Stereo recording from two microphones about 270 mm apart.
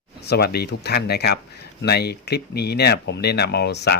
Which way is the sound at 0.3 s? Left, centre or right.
Left.